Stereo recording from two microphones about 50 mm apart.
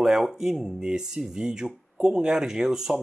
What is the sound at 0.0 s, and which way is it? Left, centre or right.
Speech, centre.